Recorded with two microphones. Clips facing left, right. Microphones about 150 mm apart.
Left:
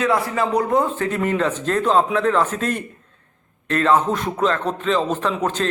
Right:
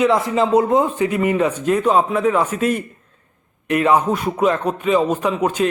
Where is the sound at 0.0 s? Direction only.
20° right (ahead or behind).